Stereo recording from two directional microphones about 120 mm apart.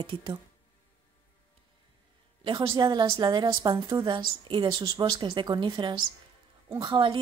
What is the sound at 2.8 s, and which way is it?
A woman's voice, 40° right (ahead or behind).